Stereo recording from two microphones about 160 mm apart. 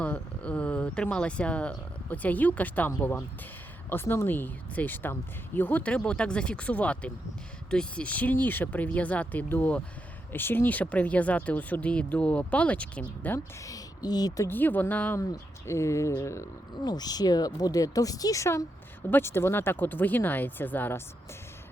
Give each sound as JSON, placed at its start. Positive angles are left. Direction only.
{"t": 0.0, "sound": "speech", "side_deg": 10}
{"t": 13.7, "sound": "speech", "side_deg": 25}